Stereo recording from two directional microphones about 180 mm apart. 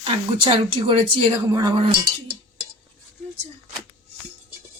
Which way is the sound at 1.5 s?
20° right (ahead or behind).